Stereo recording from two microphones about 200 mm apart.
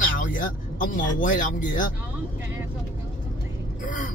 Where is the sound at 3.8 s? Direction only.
40° left (ahead or behind).